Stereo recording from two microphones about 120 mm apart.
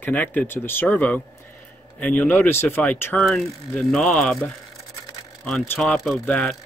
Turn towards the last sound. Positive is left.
turn(degrees=5)  # may be behind; listen again after turning